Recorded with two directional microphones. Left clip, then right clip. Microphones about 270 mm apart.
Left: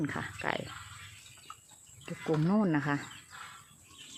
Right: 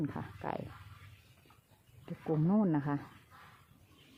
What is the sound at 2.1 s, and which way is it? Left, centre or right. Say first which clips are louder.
Speech: left 3 dB; centre.